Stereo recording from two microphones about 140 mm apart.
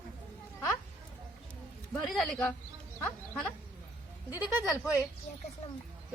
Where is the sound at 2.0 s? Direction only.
Centre (ahead or behind).